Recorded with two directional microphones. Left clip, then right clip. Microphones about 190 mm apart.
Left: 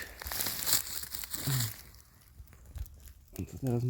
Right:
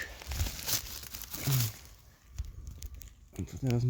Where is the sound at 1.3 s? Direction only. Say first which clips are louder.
Right 1 dB; 20° right (ahead or behind).